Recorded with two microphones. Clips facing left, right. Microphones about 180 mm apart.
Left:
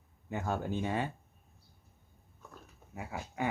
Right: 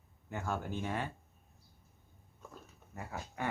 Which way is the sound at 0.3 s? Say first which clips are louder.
Left 4 dB; 20° left (ahead or behind).